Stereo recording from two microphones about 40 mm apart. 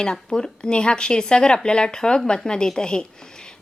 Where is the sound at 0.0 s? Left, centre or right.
Centre.